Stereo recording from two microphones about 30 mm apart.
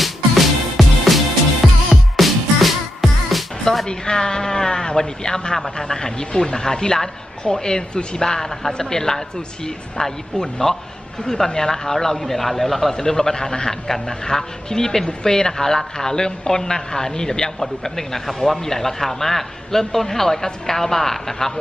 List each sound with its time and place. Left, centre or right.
0.0 s music: centre
3.8 s speech: left
8.2 s a man's voice: left
12.9 s a man's voice: centre